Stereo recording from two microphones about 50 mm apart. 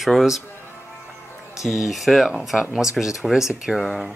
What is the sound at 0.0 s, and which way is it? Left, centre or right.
Speech, centre.